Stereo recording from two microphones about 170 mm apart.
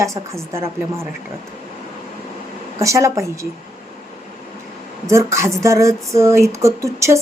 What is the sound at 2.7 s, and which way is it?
Speech, 15° right (ahead or behind).